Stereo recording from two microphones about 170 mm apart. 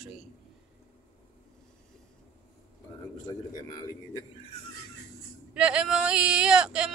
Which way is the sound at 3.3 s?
25° left (ahead or behind).